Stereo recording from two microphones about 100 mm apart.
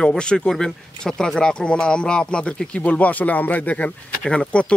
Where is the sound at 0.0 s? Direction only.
10° left (ahead or behind).